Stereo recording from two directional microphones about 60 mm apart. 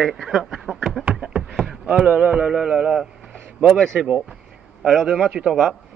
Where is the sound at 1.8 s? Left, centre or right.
Right.